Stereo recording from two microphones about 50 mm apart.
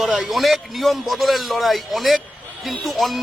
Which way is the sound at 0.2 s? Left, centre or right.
Centre.